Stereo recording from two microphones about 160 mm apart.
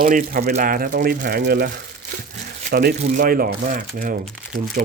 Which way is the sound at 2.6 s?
55° right (ahead or behind).